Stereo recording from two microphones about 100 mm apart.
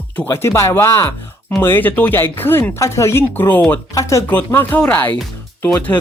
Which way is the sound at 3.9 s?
30° left (ahead or behind).